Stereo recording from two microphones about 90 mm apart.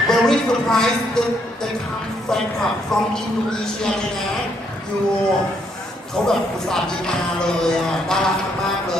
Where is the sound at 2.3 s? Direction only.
5° left (ahead or behind).